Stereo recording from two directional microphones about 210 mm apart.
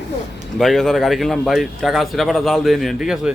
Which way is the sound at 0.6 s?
Centre (ahead or behind).